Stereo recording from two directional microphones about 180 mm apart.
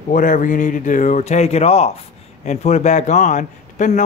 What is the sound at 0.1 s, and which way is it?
Speech, 45° left (ahead or behind).